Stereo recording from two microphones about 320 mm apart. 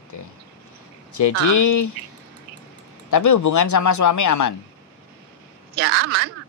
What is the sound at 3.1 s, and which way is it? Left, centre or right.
A man's voice, left.